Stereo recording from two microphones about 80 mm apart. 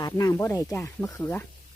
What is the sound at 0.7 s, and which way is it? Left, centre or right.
Speech, left.